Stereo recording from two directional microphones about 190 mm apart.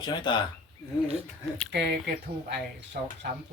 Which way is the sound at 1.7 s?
60° right (ahead or behind).